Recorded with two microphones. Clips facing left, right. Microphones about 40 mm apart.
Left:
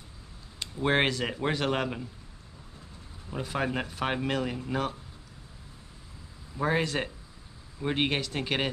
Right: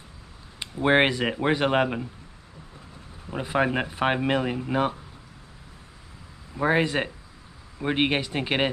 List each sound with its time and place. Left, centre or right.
0.6 s speech: right
3.3 s speech: right
6.5 s speech: right